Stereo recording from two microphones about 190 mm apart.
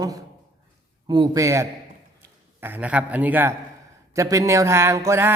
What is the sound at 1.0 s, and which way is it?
A man's voice, 20° right (ahead or behind).